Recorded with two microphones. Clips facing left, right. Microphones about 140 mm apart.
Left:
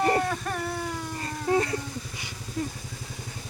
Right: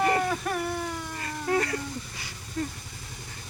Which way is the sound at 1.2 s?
25° left (ahead or behind).